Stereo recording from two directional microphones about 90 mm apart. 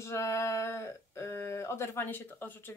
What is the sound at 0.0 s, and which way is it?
Speech, 35° left (ahead or behind).